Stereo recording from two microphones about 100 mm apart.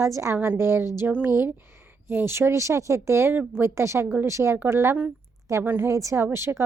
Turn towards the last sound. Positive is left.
turn(degrees=-25)  # may be behind; listen again after turning